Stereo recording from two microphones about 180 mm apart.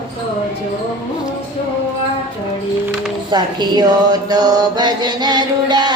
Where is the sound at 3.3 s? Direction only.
25° right (ahead or behind).